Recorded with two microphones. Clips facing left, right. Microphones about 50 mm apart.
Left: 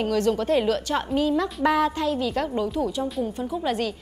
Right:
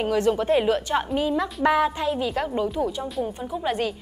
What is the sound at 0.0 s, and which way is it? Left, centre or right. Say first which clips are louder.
A woman's voice: right 1 dB; centre.